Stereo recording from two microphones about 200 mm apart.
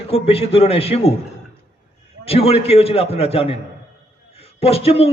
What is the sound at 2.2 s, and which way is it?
A man's voice, 30° left (ahead or behind).